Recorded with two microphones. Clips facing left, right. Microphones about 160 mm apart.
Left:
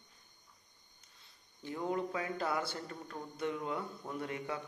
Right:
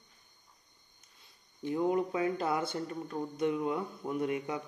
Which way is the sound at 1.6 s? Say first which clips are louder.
Right 7 dB; 20° right (ahead or behind).